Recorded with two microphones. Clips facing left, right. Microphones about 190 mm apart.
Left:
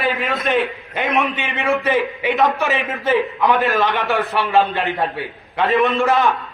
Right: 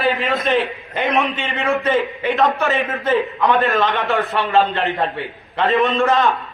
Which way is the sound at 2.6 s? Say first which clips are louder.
Right 1 dB; 15° left (ahead or behind).